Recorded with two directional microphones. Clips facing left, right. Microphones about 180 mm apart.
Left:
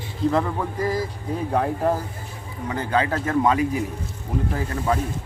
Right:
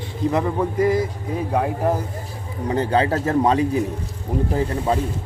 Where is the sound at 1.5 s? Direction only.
5° right (ahead or behind).